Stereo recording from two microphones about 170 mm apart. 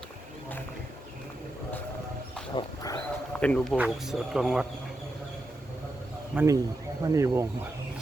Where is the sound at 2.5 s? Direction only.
20° left (ahead or behind).